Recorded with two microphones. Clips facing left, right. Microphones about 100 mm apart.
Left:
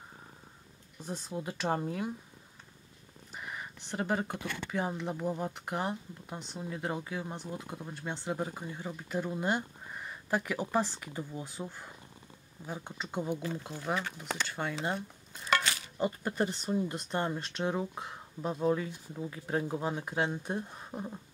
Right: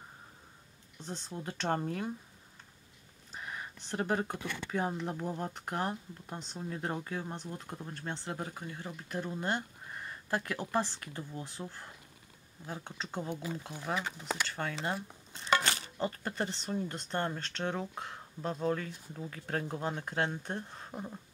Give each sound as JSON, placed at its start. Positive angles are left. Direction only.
{"t": 1.0, "sound": "speech", "side_deg": 10}
{"t": 3.3, "sound": "a sound", "side_deg": 5}
{"t": 4.6, "sound": "speech", "side_deg": 0}
{"t": 13.4, "sound": "speech", "side_deg": -10}
{"t": 14.5, "sound": "speech", "side_deg": 15}
{"t": 14.8, "sound": "speech", "side_deg": 0}
{"t": 15.6, "sound": "a sound", "side_deg": -35}
{"t": 16.0, "sound": "speech", "side_deg": 10}